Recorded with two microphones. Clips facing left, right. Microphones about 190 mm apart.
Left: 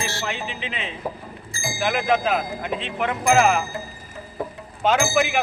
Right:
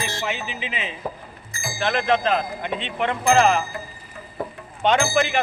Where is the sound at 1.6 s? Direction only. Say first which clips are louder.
Even; 10° left (ahead or behind).